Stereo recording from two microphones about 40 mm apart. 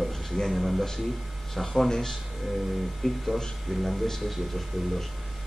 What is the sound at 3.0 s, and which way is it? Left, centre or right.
Speech, centre.